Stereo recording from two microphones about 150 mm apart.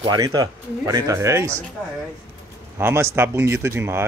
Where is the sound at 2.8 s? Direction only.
15° right (ahead or behind).